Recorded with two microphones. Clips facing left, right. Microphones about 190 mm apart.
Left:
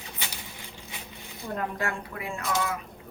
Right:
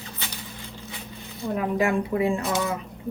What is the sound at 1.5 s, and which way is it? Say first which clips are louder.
Speech: right 9 dB; 15° right (ahead or behind).